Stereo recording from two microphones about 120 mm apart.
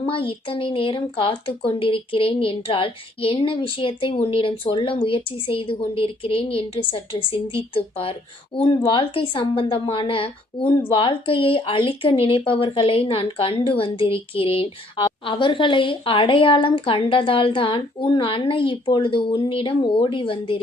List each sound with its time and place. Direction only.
0.0 s speech: 45° left (ahead or behind)